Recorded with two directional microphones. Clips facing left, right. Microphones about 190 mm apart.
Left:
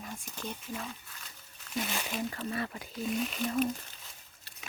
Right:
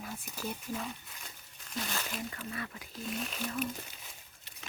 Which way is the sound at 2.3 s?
35° left (ahead or behind).